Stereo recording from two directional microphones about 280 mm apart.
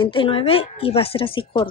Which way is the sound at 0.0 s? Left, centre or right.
Centre.